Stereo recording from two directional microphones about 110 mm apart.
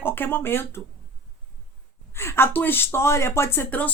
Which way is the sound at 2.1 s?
25° left (ahead or behind).